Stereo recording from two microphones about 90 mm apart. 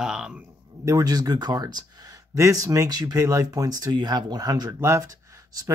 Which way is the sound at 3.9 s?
55° right (ahead or behind).